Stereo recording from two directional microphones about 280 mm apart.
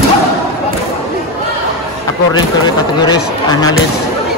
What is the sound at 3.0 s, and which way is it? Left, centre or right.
Speech, centre.